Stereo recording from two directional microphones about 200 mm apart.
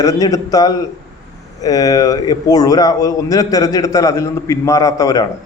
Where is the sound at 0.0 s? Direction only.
15° left (ahead or behind).